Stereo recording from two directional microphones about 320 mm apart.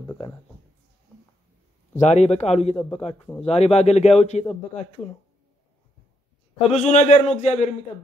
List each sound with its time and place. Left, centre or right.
0.0 s a sound: centre
2.0 s a man's voice: left
6.7 s a man's voice: left